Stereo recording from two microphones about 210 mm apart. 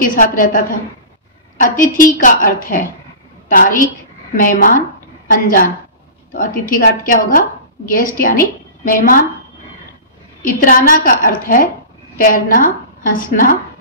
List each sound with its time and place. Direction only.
0.0 s a woman's voice: 40° left (ahead or behind)
1.6 s a woman's voice: 40° left (ahead or behind)
10.4 s a woman's voice: 40° left (ahead or behind)